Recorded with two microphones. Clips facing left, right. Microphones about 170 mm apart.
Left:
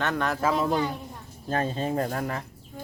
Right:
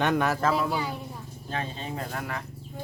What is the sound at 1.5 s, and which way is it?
Speech, 45° left (ahead or behind).